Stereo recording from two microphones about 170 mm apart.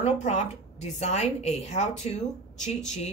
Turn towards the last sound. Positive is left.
turn(degrees=40)  # may be behind; listen again after turning